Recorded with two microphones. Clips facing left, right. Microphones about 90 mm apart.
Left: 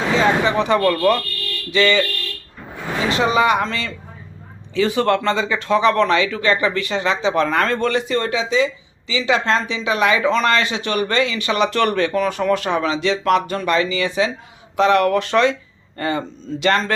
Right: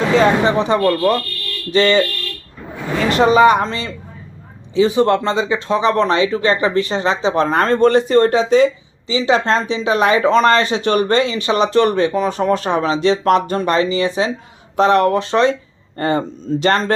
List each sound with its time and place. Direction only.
0.1 s speech: 45° right (ahead or behind)
0.5 s speech: 25° right (ahead or behind)
1.7 s speech: 35° right (ahead or behind)
3.1 s speech: 45° right (ahead or behind)
9.0 s speech: 30° right (ahead or behind)